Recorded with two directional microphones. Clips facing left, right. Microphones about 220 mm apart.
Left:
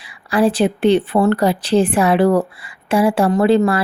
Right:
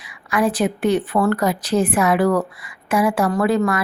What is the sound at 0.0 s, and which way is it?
Speech, 30° left (ahead or behind).